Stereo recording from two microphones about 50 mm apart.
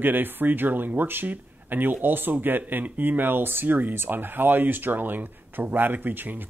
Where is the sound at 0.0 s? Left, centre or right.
Right.